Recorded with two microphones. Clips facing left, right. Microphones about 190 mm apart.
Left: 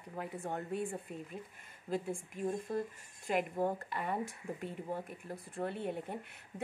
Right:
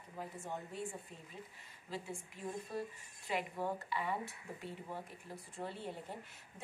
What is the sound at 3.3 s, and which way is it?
Speech, 50° left (ahead or behind).